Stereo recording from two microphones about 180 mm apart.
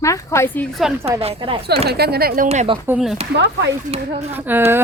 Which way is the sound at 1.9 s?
60° right (ahead or behind).